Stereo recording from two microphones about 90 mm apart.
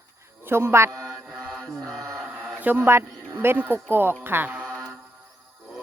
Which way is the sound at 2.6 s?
20° right (ahead or behind).